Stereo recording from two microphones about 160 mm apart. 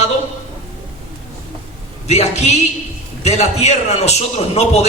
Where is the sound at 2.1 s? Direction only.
45° left (ahead or behind).